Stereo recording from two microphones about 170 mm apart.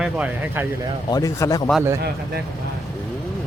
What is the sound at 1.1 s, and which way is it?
Speech, 20° left (ahead or behind).